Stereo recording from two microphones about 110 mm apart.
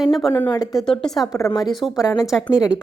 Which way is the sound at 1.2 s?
30° left (ahead or behind).